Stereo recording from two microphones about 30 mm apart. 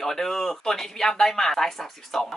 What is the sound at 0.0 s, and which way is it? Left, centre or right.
Speech, centre.